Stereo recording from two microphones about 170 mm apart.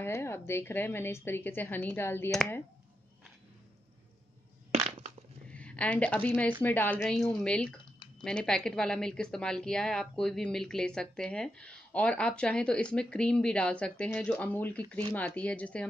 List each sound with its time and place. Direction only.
0.0 s a woman's voice: 15° left (ahead or behind)
5.5 s a woman's voice: 5° left (ahead or behind)